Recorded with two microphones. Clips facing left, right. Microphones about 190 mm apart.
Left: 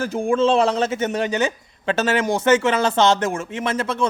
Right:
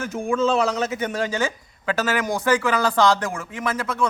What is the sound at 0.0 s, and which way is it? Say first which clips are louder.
A man's voice: left 3 dB; 30° left (ahead or behind).